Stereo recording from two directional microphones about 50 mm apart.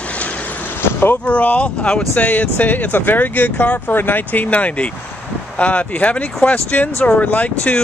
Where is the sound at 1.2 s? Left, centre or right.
Left.